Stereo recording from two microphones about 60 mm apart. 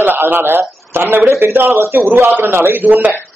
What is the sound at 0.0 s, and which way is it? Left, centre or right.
A man's voice, right.